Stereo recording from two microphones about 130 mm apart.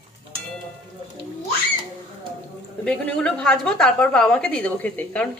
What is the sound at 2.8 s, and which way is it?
A woman's voice, 10° left (ahead or behind).